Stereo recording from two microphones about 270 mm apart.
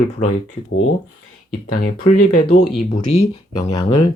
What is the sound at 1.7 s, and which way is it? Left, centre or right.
Speech, left.